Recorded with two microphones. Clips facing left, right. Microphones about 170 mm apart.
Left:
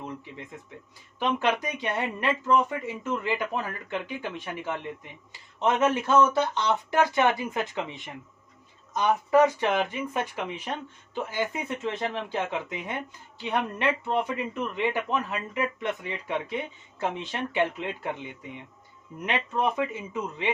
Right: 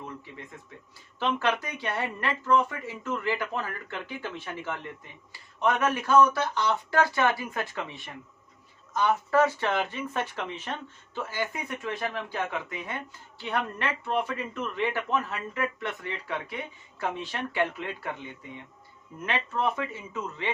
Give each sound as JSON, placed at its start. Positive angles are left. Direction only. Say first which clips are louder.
{"t": 1.2, "sound": "speech", "louder": "left 2 dB", "side_deg": 15}